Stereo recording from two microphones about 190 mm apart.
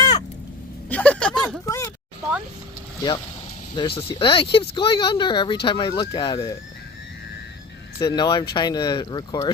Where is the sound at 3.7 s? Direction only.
25° left (ahead or behind).